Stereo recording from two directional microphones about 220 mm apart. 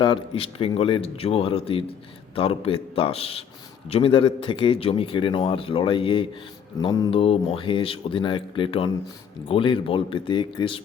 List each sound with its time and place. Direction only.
0.0 s a man's voice: 25° left (ahead or behind)